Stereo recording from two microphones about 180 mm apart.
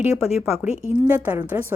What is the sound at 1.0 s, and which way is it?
Speech, 10° right (ahead or behind).